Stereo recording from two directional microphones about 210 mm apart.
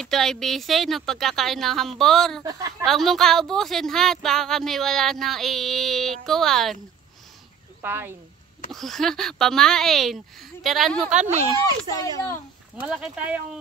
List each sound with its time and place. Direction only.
0.0 s a woman's voice: centre (ahead or behind)
7.8 s speech: 10° right (ahead or behind)
8.7 s a woman's voice: centre (ahead or behind)
11.1 s speech: 30° right (ahead or behind)
12.8 s a woman's voice: 5° right (ahead or behind)